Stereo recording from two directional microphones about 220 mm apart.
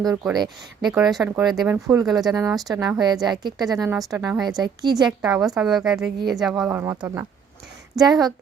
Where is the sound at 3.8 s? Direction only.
Centre (ahead or behind).